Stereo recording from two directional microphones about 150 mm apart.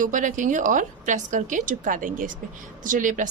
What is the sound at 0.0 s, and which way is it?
A woman's voice, 60° right (ahead or behind).